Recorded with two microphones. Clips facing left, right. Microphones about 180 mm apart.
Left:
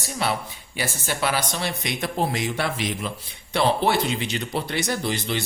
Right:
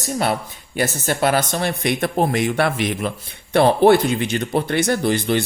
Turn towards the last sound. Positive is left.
turn(degrees=-55)  # may be behind; listen again after turning